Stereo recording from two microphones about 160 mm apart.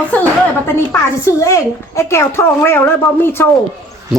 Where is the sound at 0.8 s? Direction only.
20° left (ahead or behind).